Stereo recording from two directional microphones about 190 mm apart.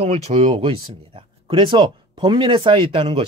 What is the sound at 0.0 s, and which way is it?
Speech, 30° right (ahead or behind).